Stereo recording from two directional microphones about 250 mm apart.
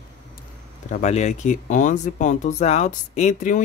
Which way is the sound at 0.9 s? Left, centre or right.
Left.